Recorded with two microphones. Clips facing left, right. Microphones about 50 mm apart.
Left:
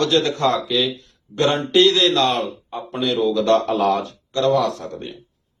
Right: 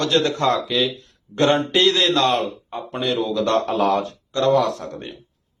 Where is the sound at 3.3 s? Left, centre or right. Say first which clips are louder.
Left 1 dB; centre.